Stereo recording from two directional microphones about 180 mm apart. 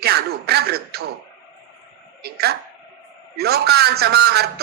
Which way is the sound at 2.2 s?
60° right (ahead or behind).